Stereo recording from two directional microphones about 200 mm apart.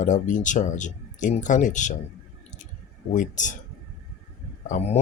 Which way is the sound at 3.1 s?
40° left (ahead or behind).